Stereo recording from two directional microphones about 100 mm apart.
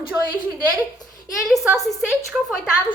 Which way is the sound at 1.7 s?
Centre (ahead or behind).